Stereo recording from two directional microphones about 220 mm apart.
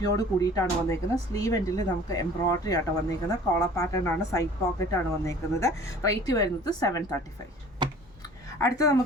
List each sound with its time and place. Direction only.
0.2 s speech: 15° left (ahead or behind)
7.8 s a sound: 20° right (ahead or behind)
8.6 s speech: 15° left (ahead or behind)